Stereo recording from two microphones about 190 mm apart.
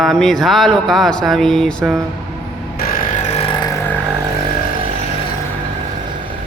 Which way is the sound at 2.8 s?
50° left (ahead or behind).